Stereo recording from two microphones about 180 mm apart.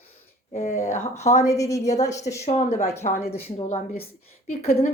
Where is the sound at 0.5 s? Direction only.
40° left (ahead or behind).